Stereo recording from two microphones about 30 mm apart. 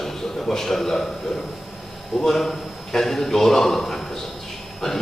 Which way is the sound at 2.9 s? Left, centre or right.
Centre.